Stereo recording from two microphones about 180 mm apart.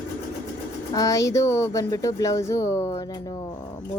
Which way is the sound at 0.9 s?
20° left (ahead or behind).